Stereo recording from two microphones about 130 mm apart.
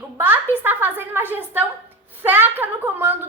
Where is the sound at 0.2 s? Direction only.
15° right (ahead or behind).